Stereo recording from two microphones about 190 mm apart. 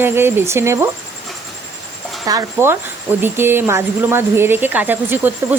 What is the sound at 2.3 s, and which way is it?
A woman's voice, 15° right (ahead or behind).